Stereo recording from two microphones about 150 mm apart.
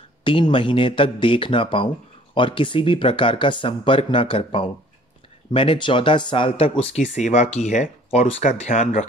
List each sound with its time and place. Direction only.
0.2 s speech: 35° left (ahead or behind)
7.0 s speech: 50° left (ahead or behind)